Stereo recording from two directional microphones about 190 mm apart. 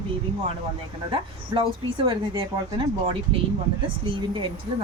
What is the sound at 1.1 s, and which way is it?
Speech, 25° right (ahead or behind).